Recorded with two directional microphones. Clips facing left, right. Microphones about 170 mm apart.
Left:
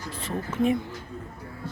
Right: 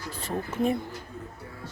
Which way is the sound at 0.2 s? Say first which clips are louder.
Left 2 dB; 40° right (ahead or behind).